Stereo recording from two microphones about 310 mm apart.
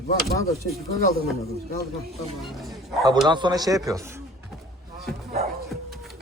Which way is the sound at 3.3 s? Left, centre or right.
Centre.